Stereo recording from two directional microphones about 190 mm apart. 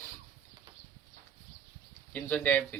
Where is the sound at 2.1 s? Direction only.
10° left (ahead or behind).